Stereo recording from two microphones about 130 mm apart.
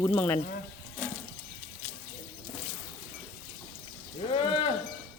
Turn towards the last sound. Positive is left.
turn(degrees=40)  # may be behind; listen again after turning